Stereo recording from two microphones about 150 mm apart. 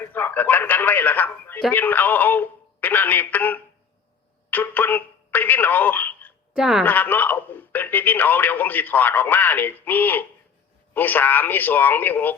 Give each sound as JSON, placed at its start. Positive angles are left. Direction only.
{"t": 0.0, "sound": "a man's voice", "side_deg": 10}
{"t": 6.6, "sound": "a woman's voice", "side_deg": -5}
{"t": 6.8, "sound": "a man's voice", "side_deg": 10}